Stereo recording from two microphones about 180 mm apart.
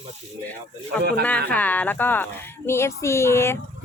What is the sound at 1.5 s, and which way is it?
Speech, 10° left (ahead or behind).